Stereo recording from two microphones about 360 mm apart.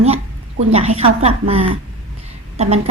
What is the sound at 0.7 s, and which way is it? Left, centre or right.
A woman's voice, centre.